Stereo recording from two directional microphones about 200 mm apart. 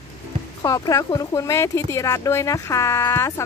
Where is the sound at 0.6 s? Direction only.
20° left (ahead or behind).